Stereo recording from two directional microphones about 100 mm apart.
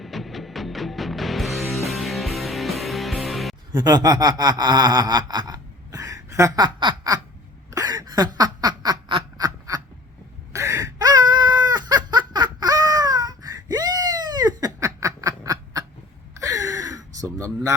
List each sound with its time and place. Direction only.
0.0 s music: centre (ahead or behind)
3.7 s a sound: 45° right (ahead or behind)
6.7 s snicker: 50° right (ahead or behind)
7.7 s quack: 40° right (ahead or behind)
9.4 s a sound: 40° right (ahead or behind)
16.3 s gasp: 35° right (ahead or behind)